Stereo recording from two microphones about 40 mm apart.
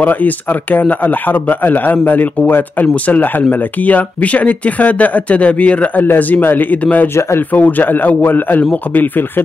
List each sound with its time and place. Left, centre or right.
0.0 s a man's voice: left
6.1 s a man's voice: left
6.8 s a man's voice: left